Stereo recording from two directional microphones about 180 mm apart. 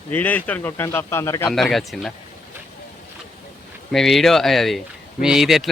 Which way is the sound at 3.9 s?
Centre (ahead or behind).